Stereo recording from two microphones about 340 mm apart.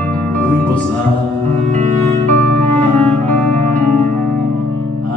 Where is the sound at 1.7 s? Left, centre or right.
Right.